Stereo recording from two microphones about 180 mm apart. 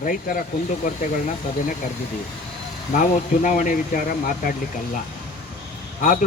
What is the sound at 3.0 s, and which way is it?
Speech, 45° left (ahead or behind).